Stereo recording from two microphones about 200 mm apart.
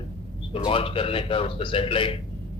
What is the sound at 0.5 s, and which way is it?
A man's voice, 25° left (ahead or behind).